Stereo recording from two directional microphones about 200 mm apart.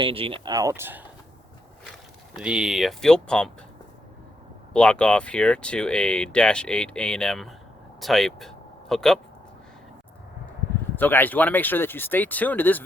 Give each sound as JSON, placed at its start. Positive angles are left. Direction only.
{"t": 0.0, "sound": "speech", "side_deg": -25}
{"t": 2.3, "sound": "speech", "side_deg": -5}
{"t": 4.7, "sound": "speech", "side_deg": 5}
{"t": 10.9, "sound": "speech", "side_deg": 10}